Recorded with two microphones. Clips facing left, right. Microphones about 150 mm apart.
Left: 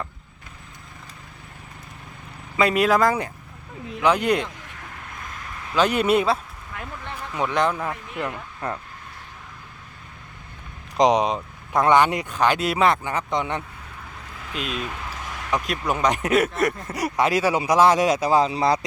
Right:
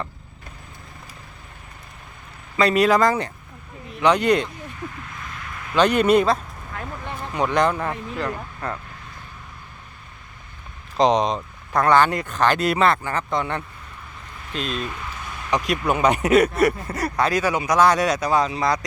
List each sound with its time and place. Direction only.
2.6 s speech: 5° left (ahead or behind)
5.7 s speech: 5° left (ahead or behind)
8.2 s speech: 15° left (ahead or behind)
10.9 s speech: 10° left (ahead or behind)
15.2 s a sound: 90° left
15.4 s speech: centre (ahead or behind)
16.9 s speech: 20° left (ahead or behind)